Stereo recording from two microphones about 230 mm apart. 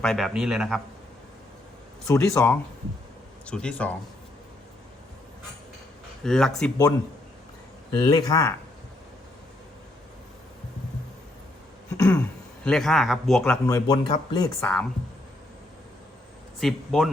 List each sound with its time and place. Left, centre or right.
0.0 s speech: centre
2.0 s speech: centre
6.2 s speech: centre
8.0 s speech: centre
11.9 s a sound: centre
12.6 s speech: centre
13.7 s speech: centre
14.6 s speech: centre
16.6 s speech: centre